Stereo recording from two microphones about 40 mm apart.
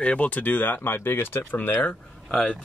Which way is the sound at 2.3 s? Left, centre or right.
Centre.